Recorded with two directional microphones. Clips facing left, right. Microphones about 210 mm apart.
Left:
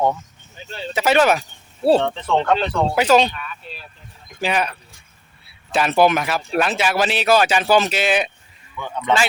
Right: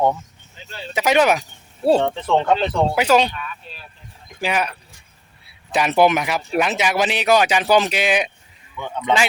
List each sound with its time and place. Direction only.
0.9 s a man's voice: 15° right (ahead or behind)
4.4 s a man's voice: 10° right (ahead or behind)
5.7 s a man's voice: 15° right (ahead or behind)